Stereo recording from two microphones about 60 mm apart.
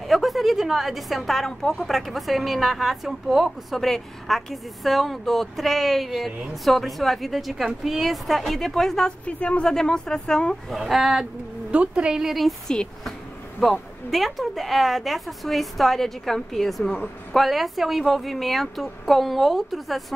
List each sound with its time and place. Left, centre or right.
0.0 s speech: centre
9.2 s a woman's voice: left
10.7 s speech: centre
11.7 s a woman's voice: centre
12.6 s a woman's voice: centre